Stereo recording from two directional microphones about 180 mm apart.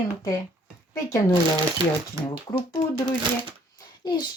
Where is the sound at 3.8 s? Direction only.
25° left (ahead or behind).